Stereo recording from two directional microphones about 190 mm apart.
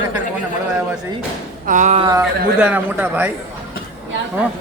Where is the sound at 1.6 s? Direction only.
40° right (ahead or behind).